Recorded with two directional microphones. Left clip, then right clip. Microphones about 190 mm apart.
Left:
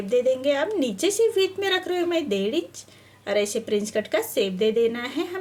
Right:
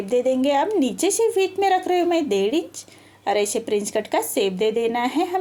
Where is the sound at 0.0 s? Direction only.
20° right (ahead or behind).